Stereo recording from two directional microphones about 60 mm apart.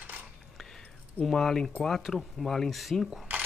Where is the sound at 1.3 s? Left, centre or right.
Centre.